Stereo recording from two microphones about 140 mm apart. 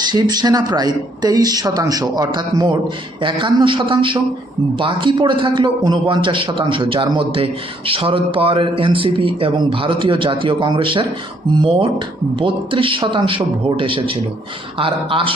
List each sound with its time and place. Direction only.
0.1 s a man's voice: 30° right (ahead or behind)